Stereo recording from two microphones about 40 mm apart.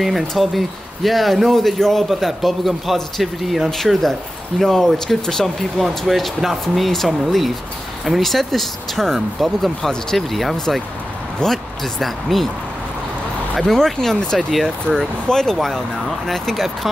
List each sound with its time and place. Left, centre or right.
0.3 s speech: centre
4.6 s speech: centre
13.6 s speech: centre
15.2 s speech: centre
15.5 s speech: centre